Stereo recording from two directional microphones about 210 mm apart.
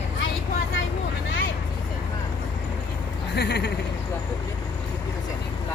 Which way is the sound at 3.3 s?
50° left (ahead or behind).